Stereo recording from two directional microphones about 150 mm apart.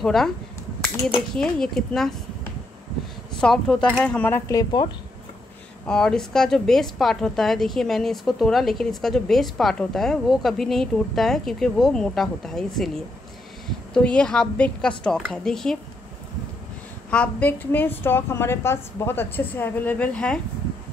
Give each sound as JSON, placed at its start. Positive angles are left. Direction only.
{"t": 0.0, "sound": "a woman's voice", "side_deg": 0}
{"t": 3.3, "sound": "a woman's voice", "side_deg": 5}
{"t": 4.5, "sound": "speech", "side_deg": 25}
{"t": 5.9, "sound": "a woman's voice", "side_deg": 5}
{"t": 17.1, "sound": "a woman's voice", "side_deg": 10}